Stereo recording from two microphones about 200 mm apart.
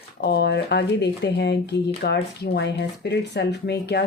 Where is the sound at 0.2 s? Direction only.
55° left (ahead or behind).